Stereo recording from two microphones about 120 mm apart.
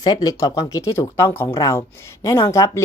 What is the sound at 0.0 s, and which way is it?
A woman's voice, 35° left (ahead or behind).